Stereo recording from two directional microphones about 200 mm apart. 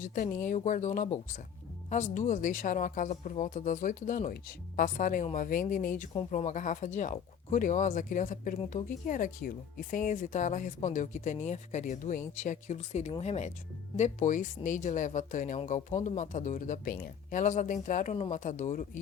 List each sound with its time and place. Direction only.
0.0 s speech: 40° left (ahead or behind)